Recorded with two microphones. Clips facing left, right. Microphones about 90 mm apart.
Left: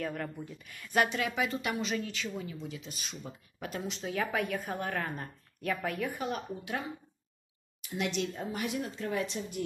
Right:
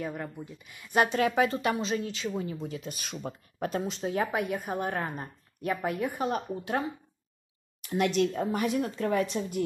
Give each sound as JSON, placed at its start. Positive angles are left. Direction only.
{"t": 0.0, "sound": "speech", "side_deg": -10}
{"t": 0.9, "sound": "speech", "side_deg": -40}
{"t": 2.5, "sound": "a woman's voice", "side_deg": -45}
{"t": 3.5, "sound": "a woman's voice", "side_deg": -40}
{"t": 7.8, "sound": "a woman's voice", "side_deg": -50}